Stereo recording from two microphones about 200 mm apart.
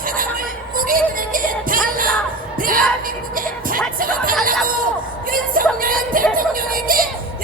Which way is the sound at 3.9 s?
45° right (ahead or behind).